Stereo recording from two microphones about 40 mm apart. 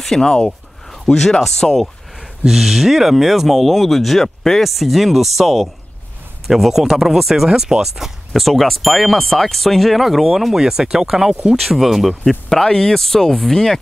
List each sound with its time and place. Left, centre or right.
0.2 s speech: centre
2.4 s speech: centre
12.4 s speech: centre